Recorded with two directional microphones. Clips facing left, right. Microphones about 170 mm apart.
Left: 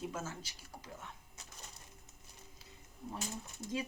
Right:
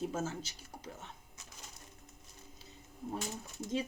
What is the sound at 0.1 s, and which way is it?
Speech, 35° right (ahead or behind).